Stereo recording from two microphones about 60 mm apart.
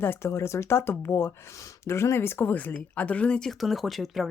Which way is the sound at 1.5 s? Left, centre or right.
Left.